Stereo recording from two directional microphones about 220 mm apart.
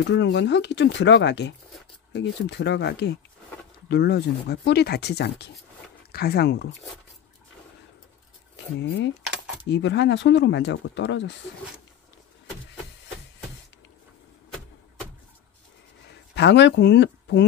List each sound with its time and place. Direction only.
0.0 s speech: 55° left (ahead or behind)
8.7 s speech: 55° left (ahead or behind)
16.1 s speech: 50° left (ahead or behind)